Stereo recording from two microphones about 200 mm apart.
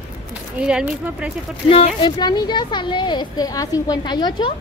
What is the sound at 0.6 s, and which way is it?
Speech, 5° right (ahead or behind).